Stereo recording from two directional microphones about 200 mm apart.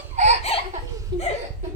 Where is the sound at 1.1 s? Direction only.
20° right (ahead or behind).